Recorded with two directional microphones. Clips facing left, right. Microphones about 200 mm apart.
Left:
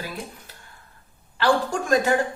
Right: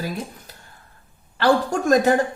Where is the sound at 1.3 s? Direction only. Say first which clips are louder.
Right 3 dB; 40° right (ahead or behind).